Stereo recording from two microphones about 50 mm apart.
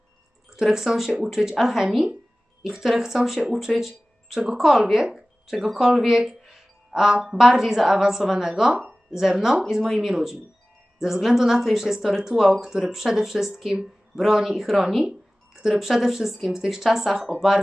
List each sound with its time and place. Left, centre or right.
0.5 s speech: centre
8.7 s speech: right
9.1 s speech: centre